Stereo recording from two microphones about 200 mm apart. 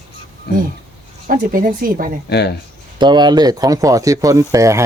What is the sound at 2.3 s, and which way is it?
Speech, 55° left (ahead or behind).